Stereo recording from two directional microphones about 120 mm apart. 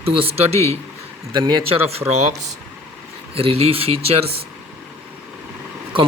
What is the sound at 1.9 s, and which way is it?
Speech, 60° right (ahead or behind).